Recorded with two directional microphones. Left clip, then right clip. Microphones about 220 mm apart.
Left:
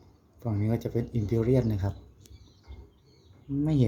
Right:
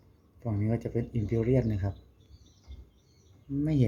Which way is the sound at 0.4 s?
Centre (ahead or behind).